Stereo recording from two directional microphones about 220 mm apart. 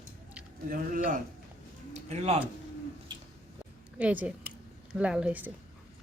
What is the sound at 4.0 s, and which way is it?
Speech, 5° right (ahead or behind).